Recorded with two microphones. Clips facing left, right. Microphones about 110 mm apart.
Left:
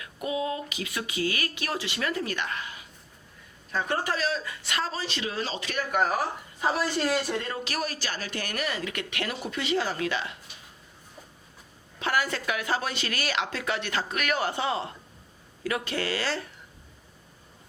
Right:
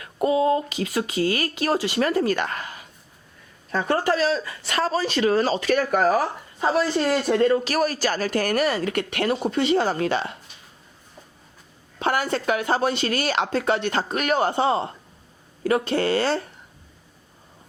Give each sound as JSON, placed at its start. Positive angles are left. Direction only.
{"t": 0.0, "sound": "a woman's voice", "side_deg": -40}
{"t": 4.0, "sound": "speech", "side_deg": -40}
{"t": 7.3, "sound": "a woman's voice", "side_deg": -45}
{"t": 11.9, "sound": "a woman's voice", "side_deg": -30}